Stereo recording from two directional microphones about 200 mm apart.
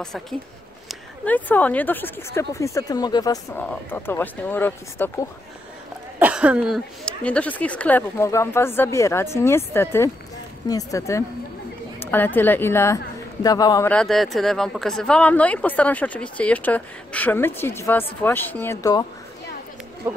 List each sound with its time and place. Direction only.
0.0 s speech: centre (ahead or behind); by 3.3 s 20° left (ahead or behind)
3.5 s speech: 10° left (ahead or behind)
6.1 s speech: 5° right (ahead or behind); by 11.2 s 15° left (ahead or behind)
12.0 s a sound: 10° left (ahead or behind)
12.4 s speech: 10° left (ahead or behind)
13.8 s speech: 5° left (ahead or behind)